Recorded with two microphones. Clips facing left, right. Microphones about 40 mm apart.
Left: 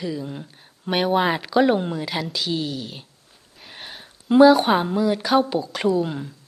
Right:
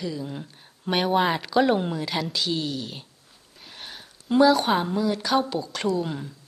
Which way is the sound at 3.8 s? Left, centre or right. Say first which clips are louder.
Left 2 dB; centre.